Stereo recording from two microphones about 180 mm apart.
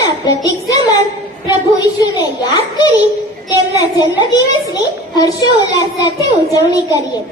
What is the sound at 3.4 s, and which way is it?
A child's voice, 25° left (ahead or behind).